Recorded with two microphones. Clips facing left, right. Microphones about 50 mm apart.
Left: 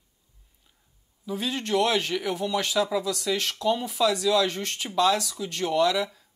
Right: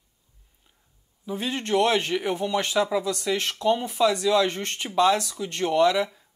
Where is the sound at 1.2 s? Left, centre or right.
Right.